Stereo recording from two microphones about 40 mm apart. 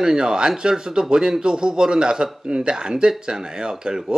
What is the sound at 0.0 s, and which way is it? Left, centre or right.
Speech, centre.